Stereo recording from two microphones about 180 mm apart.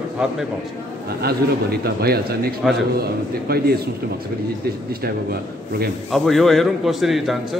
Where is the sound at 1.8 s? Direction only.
60° right (ahead or behind).